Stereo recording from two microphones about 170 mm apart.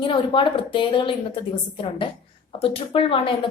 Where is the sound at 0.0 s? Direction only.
30° left (ahead or behind).